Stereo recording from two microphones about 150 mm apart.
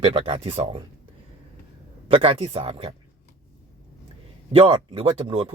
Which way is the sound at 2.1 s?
40° right (ahead or behind).